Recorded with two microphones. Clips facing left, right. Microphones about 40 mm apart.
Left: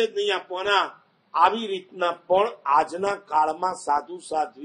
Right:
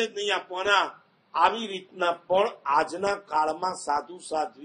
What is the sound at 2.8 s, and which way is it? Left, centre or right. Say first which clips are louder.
A man's voice: left 2 dB; centre.